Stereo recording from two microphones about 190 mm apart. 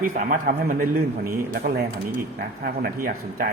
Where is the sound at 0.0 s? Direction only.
45° right (ahead or behind).